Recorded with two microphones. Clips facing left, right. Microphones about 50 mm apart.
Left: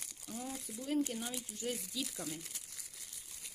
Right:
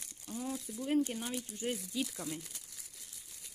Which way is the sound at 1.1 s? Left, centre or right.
Centre.